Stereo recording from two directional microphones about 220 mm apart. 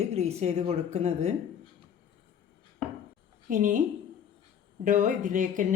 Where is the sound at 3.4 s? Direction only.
35° right (ahead or behind).